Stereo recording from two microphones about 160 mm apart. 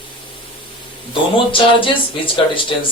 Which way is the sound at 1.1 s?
35° left (ahead or behind).